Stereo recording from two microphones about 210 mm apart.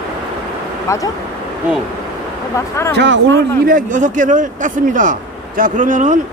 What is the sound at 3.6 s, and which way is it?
A man's voice, 40° right (ahead or behind).